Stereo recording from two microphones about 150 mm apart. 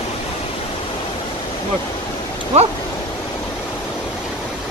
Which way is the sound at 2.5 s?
45° right (ahead or behind).